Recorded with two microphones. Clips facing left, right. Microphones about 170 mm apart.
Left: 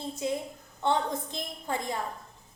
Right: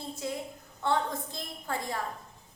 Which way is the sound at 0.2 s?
20° left (ahead or behind).